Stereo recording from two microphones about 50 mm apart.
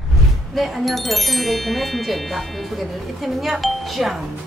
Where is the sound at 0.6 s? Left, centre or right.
Centre.